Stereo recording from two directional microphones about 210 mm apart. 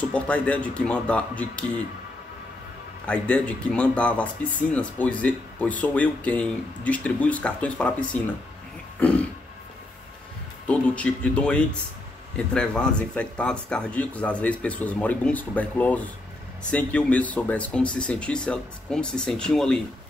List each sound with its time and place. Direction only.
0.0 s speech: 5° left (ahead or behind)
3.1 s speech: 5° left (ahead or behind)
10.7 s speech: 5° left (ahead or behind)